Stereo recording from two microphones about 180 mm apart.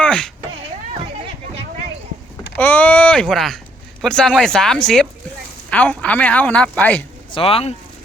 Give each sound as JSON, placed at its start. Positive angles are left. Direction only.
{"t": 0.0, "sound": "a sound", "side_deg": 5}
{"t": 2.6, "sound": "speech", "side_deg": 10}
{"t": 7.3, "sound": "speech", "side_deg": 30}